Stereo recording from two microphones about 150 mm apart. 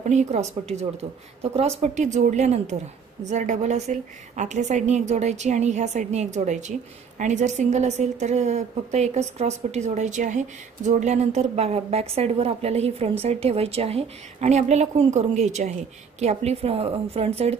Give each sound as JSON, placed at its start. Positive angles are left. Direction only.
{"t": 0.0, "sound": "a woman's voice", "side_deg": -50}